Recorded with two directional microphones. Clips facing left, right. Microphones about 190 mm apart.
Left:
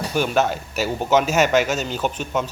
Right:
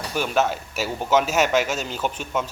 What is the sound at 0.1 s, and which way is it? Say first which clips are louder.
Speech: left 2 dB; centre (ahead or behind).